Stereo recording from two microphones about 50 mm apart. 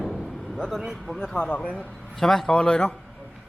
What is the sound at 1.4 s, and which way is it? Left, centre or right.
Speech, centre.